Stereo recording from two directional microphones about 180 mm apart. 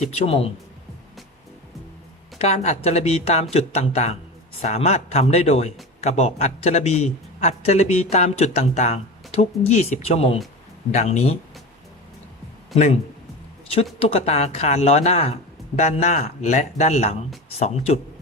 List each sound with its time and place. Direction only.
0.3 s a man's voice: 35° left (ahead or behind)
2.4 s a man's voice: 35° left (ahead or behind)
12.7 s a man's voice: 35° left (ahead or behind)
14.0 s a man's voice: 35° left (ahead or behind)